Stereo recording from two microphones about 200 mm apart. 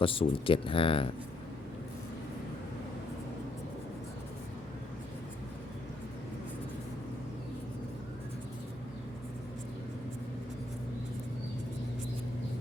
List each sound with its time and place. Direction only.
0.0 s speech: 25° left (ahead or behind)